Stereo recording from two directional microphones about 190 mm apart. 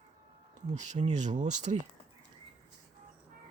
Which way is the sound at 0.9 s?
40° right (ahead or behind).